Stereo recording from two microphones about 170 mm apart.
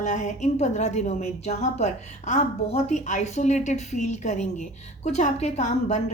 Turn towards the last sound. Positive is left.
turn(degrees=40)  # may be behind; listen again after turning